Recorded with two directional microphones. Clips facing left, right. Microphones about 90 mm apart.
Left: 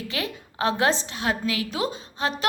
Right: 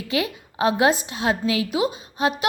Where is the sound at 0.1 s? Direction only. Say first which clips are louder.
Right 6 dB; 15° right (ahead or behind).